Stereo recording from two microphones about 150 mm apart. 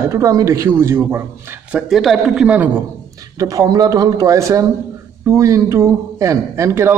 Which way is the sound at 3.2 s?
25° right (ahead or behind).